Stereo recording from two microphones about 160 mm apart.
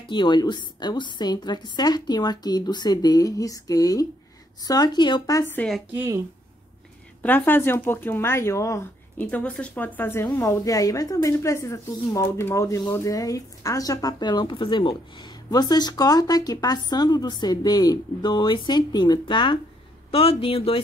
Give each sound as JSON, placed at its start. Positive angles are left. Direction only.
{"t": 0.1, "sound": "speech", "side_deg": 30}
{"t": 5.9, "sound": "speech", "side_deg": -15}
{"t": 7.2, "sound": "speech", "side_deg": 10}